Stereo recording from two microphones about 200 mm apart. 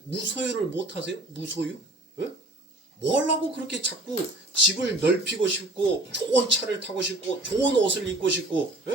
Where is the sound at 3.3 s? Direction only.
60° right (ahead or behind).